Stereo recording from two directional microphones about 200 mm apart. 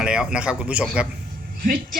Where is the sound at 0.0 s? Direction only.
5° right (ahead or behind).